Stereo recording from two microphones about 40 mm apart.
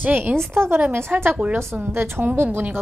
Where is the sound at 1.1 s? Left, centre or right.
Right.